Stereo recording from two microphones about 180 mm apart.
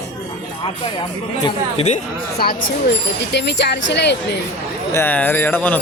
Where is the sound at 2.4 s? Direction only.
60° left (ahead or behind).